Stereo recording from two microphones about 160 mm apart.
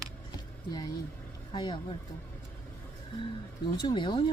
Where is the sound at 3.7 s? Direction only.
25° left (ahead or behind).